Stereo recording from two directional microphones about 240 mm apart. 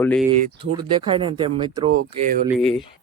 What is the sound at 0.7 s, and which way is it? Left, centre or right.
Speech, centre.